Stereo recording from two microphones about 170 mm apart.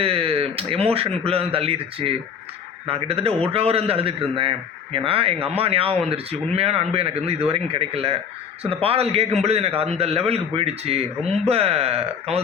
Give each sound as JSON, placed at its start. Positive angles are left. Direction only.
{"t": 0.0, "sound": "a man's voice", "side_deg": -35}